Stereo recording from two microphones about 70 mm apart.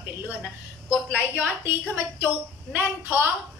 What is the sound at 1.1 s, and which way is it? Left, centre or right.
A woman's voice, right.